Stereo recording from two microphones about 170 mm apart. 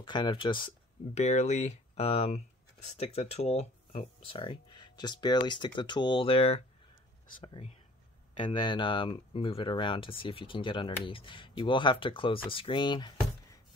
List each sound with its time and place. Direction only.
0.0 s speech: 25° left (ahead or behind)
1.1 s speech: 40° left (ahead or behind)